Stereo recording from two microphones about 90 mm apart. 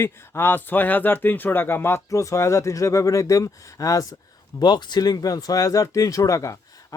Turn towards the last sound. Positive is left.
turn(degrees=35)  # may be behind; listen again after turning